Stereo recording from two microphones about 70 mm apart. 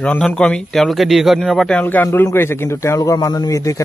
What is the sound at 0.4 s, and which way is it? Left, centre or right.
Speech, centre.